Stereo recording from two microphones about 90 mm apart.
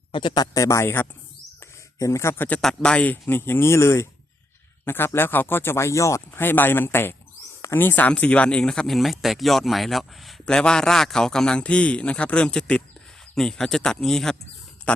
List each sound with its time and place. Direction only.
0.1 s speech: 70° left (ahead or behind)
0.3 s speech: 40° left (ahead or behind)
2.6 s speech: 5° left (ahead or behind); by 6.4 s 35° left (ahead or behind)
6.4 s a man's voice: 20° left (ahead or behind); by 14.3 s 5° left (ahead or behind)
14.9 s speech: 15° left (ahead or behind)